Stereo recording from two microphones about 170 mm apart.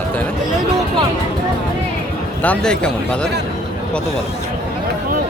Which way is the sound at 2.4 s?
5° left (ahead or behind).